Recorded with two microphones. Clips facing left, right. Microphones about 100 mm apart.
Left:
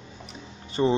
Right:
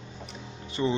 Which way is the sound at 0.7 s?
35° left (ahead or behind).